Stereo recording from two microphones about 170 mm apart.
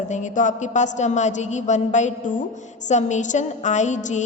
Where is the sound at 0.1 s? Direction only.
45° left (ahead or behind).